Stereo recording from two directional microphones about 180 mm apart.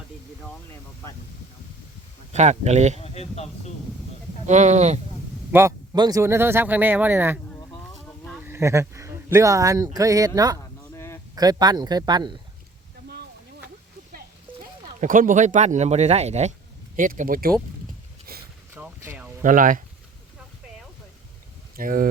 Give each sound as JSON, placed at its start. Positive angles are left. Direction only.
{"t": 2.3, "sound": "speech", "side_deg": -40}
{"t": 3.0, "sound": "speech", "side_deg": 35}
{"t": 4.4, "sound": "speech", "side_deg": -40}
{"t": 5.5, "sound": "speech", "side_deg": -15}
{"t": 8.0, "sound": "a sound", "side_deg": 5}
{"t": 8.4, "sound": "speech", "side_deg": -15}
{"t": 10.9, "sound": "a sound", "side_deg": 15}
{"t": 11.3, "sound": "speech", "side_deg": -20}
{"t": 15.0, "sound": "speech", "side_deg": -50}
{"t": 17.0, "sound": "speech", "side_deg": -50}
{"t": 18.3, "sound": "boat", "side_deg": -55}
{"t": 18.7, "sound": "vehicle", "side_deg": -10}
{"t": 19.4, "sound": "speech", "side_deg": -50}
{"t": 21.8, "sound": "speech", "side_deg": -50}